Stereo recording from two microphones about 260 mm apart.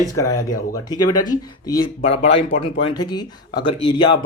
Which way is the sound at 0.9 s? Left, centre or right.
Left.